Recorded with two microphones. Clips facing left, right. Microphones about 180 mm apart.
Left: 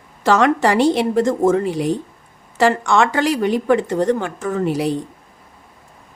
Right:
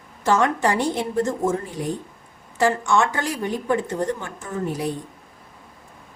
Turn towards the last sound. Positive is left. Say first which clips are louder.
# left 7 dB
turn(degrees=90)